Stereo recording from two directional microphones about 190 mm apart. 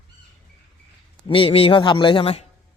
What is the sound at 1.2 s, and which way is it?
Speech, 30° left (ahead or behind).